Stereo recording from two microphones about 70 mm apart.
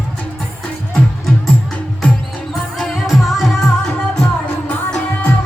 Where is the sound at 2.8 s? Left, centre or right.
Centre.